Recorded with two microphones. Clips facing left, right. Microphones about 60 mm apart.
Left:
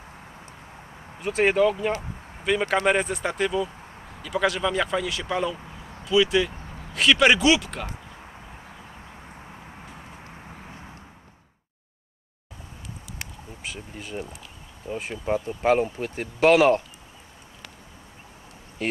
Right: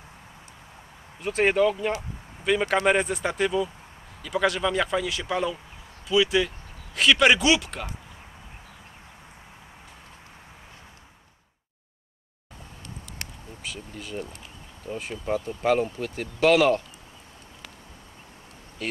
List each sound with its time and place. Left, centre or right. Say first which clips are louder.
1.2 s speech: left 1 dB; centre
2.0 s a sound: left 2 dB; centre
2.9 s speech: even; centre
13.9 s speech: even; left